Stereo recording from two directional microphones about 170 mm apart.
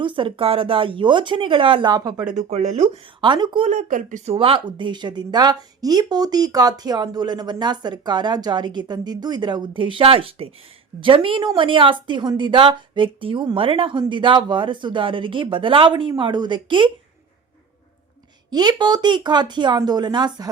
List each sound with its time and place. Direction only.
0.0 s speech: 30° right (ahead or behind)
2.3 s speech: 40° right (ahead or behind)
3.7 s speech: 50° right (ahead or behind)
4.4 s speech: 30° right (ahead or behind)
18.5 s speech: 25° right (ahead or behind)